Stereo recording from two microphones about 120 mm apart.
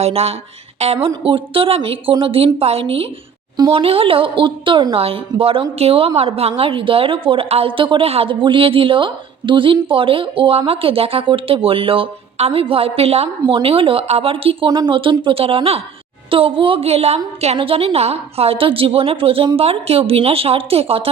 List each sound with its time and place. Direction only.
0.0 s speech: 60° right (ahead or behind)
1.2 s a woman's voice: 50° right (ahead or behind)